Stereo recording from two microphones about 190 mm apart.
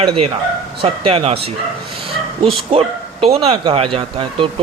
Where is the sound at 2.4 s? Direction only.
30° right (ahead or behind).